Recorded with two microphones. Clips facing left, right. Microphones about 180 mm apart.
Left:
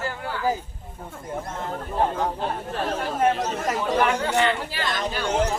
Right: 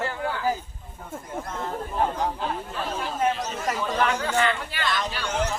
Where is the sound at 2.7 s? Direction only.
55° left (ahead or behind).